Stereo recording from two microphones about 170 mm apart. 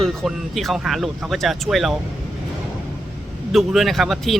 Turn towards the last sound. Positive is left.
turn(degrees=0)  # may be behind; listen again after turning